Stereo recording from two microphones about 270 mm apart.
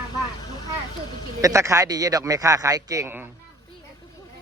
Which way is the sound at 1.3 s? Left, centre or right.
Centre.